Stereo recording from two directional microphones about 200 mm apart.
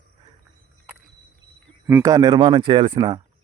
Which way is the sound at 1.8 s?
15° right (ahead or behind).